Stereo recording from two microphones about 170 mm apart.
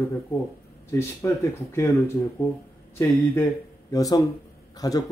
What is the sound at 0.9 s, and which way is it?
Speech, 15° left (ahead or behind).